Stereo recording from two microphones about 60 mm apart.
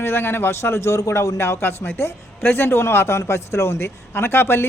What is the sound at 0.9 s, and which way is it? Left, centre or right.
Speech, left.